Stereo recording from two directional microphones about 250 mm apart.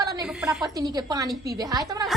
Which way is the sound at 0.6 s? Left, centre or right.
Centre.